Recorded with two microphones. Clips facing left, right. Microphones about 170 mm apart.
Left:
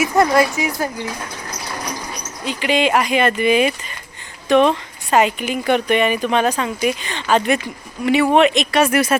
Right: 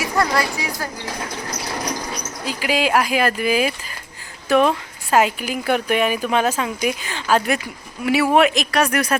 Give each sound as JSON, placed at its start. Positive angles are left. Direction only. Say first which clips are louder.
{"t": 0.0, "sound": "speech", "louder": "left 6 dB", "side_deg": 20}
{"t": 2.5, "sound": "speech", "louder": "left 2 dB", "side_deg": -5}